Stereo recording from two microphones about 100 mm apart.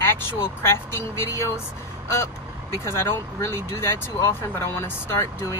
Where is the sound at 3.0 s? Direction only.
25° left (ahead or behind).